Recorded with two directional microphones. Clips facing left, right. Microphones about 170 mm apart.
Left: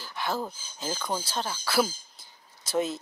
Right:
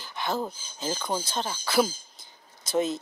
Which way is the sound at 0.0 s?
5° left (ahead or behind).